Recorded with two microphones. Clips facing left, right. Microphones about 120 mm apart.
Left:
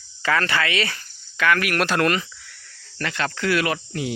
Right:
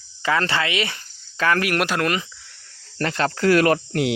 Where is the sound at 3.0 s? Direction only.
35° right (ahead or behind).